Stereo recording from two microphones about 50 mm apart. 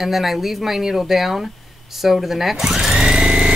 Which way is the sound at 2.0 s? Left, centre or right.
Centre.